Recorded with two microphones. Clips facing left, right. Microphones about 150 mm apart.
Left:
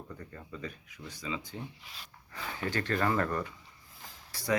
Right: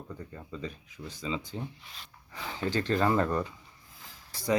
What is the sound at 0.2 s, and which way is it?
Speech, 20° right (ahead or behind).